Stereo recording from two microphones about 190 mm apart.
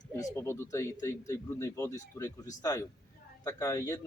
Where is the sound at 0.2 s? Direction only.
15° left (ahead or behind).